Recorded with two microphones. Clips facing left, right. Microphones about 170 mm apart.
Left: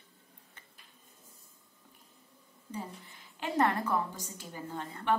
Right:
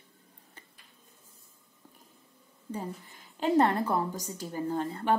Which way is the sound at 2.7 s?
40° right (ahead or behind).